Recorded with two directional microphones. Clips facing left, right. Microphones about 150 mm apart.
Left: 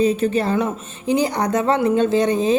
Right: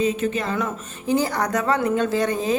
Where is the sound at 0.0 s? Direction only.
35° left (ahead or behind).